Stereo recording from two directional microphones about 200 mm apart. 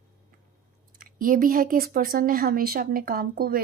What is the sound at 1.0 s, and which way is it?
Speech, 45° right (ahead or behind).